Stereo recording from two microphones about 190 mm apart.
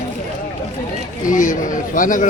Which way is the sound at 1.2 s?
45° left (ahead or behind).